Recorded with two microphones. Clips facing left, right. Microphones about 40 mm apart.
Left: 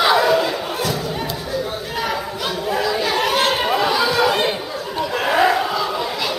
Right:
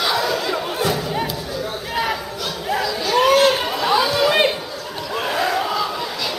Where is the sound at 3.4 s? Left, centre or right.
Centre.